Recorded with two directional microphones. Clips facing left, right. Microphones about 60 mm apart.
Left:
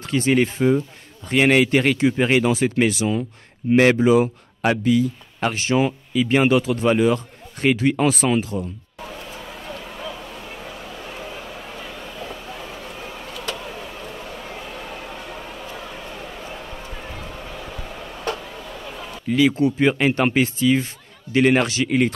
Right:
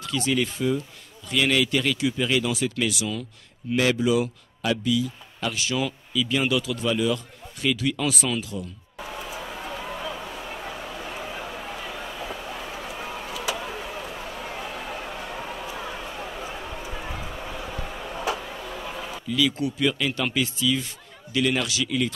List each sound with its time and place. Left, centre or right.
0.0 s a man's voice: left
3.7 s a man's voice: left
9.0 s a sound: centre
19.2 s a man's voice: left